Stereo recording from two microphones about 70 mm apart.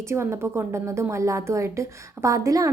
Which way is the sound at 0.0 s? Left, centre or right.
Right.